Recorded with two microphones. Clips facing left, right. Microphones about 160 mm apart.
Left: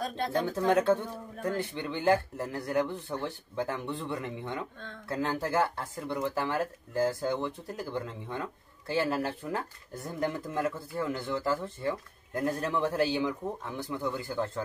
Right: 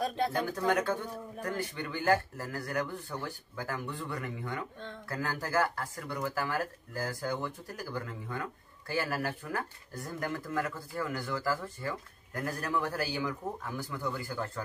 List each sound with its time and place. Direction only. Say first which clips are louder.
0.4 s speech: left 6 dB; 25° left (ahead or behind)